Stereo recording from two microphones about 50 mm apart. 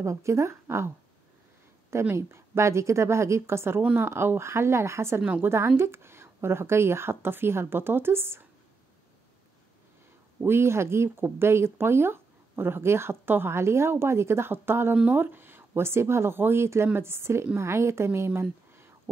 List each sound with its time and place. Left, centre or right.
0.0 s a woman's voice: right
2.1 s a woman's voice: right
10.4 s speech: right